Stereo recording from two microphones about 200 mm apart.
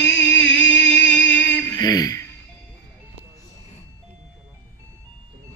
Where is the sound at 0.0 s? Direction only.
65° left (ahead or behind).